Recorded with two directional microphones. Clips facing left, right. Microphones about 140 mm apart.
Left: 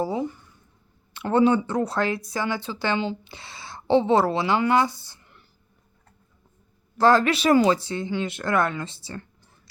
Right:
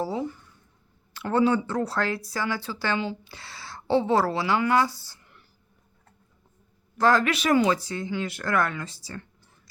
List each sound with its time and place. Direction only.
0.0 s a sound: 15° left (ahead or behind)
1.1 s a woman's voice: 20° left (ahead or behind)
7.0 s a woman's voice: 30° left (ahead or behind)